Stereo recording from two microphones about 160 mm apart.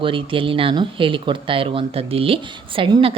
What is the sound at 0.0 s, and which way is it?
Speech, 35° right (ahead or behind).